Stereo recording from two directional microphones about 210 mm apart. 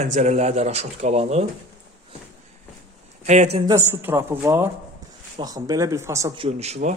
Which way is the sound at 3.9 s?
10° right (ahead or behind).